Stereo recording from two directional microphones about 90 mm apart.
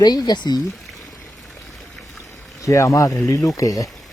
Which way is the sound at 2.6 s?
35° left (ahead or behind).